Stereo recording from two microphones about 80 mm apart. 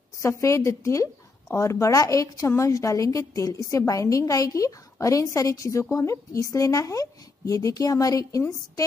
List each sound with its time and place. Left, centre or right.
0.2 s a woman's voice: left